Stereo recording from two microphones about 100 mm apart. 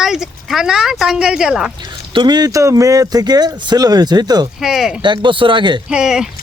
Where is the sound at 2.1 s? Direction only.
45° right (ahead or behind).